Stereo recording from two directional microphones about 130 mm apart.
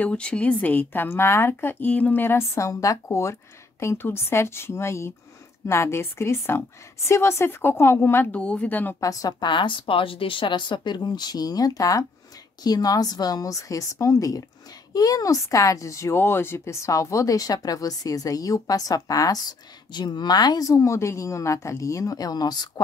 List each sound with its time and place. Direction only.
0.0 s speech: 10° left (ahead or behind)
9.0 s a woman's voice: 25° left (ahead or behind)